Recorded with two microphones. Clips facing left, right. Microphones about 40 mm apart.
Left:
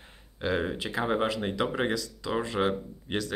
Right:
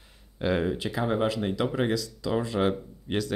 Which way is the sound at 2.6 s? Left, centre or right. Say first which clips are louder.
Right 1 dB; centre.